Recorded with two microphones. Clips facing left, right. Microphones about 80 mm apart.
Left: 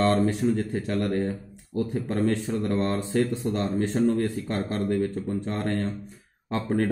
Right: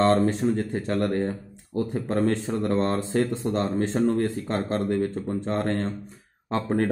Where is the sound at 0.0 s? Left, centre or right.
Right.